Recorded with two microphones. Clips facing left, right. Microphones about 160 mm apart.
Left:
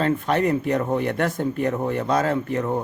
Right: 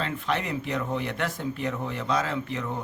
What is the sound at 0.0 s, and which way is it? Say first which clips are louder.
Speech: left 8 dB; 45° left (ahead or behind).